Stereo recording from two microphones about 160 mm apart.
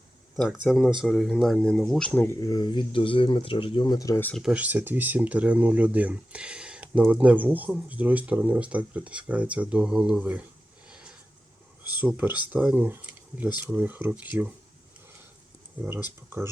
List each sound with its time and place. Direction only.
0.3 s speech: 5° right (ahead or behind)
2.4 s speech: 25° left (ahead or behind)
4.4 s speech: 5° right (ahead or behind)
10.8 s a sound: 5° right (ahead or behind)
11.9 s speech: 10° right (ahead or behind)
15.8 s speech: 15° right (ahead or behind)